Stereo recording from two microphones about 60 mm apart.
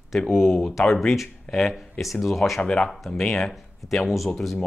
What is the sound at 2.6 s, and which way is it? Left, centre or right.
Speech, centre.